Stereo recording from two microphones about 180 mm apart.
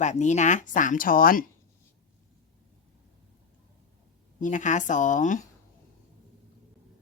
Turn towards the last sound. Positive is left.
turn(degrees=45)  # may be behind; listen again after turning